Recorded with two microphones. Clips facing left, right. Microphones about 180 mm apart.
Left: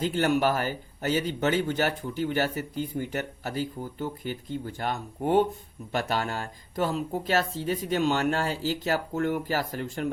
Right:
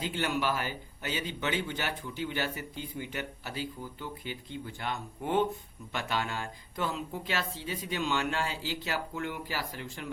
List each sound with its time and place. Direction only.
0.0 s speech: 45° left (ahead or behind)